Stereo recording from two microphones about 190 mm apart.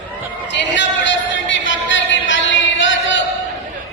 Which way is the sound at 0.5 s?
70° left (ahead or behind).